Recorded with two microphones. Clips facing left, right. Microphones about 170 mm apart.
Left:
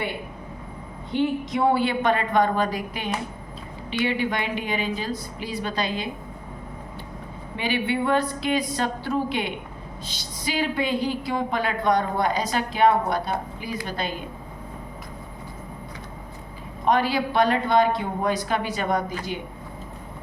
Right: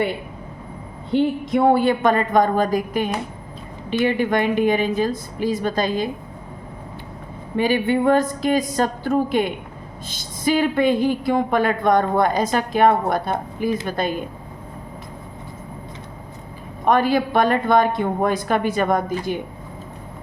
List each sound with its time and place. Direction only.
1.5 s a woman's voice: 55° right (ahead or behind)
7.5 s a woman's voice: 45° right (ahead or behind)
16.8 s a woman's voice: 50° right (ahead or behind)